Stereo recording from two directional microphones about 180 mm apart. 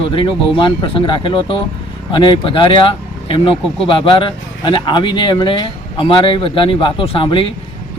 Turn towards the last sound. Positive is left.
turn(degrees=30)  # may be behind; listen again after turning